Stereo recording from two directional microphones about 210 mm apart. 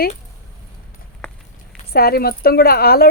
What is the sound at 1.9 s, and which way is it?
A woman's voice, 45° left (ahead or behind).